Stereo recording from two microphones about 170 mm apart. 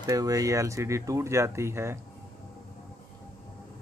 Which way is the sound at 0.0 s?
20° right (ahead or behind).